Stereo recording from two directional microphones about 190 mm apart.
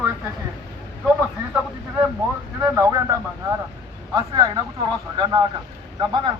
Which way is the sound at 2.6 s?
15° right (ahead or behind).